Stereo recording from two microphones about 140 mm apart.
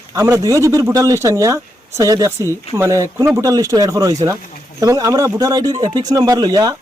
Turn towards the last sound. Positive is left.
turn(degrees=-30)  # may be behind; listen again after turning